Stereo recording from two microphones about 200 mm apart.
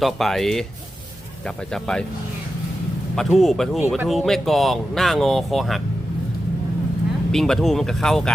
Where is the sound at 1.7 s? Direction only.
5° left (ahead or behind).